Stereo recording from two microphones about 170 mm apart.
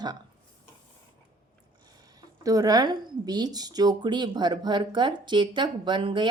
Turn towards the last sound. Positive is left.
turn(degrees=-30)  # may be behind; listen again after turning